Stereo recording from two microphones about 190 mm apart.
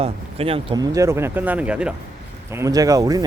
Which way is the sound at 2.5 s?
15° right (ahead or behind).